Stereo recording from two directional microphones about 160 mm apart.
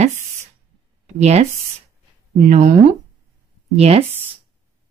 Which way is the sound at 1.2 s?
40° right (ahead or behind).